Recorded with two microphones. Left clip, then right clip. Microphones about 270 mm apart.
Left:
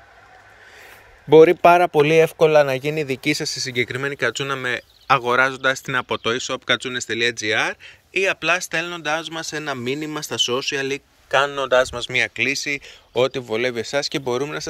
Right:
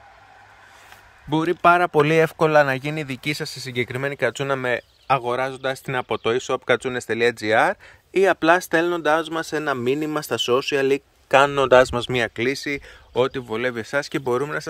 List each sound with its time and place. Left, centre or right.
1.3 s a man's voice: centre